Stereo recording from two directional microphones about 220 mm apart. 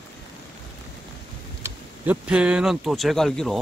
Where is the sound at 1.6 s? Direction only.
5° right (ahead or behind).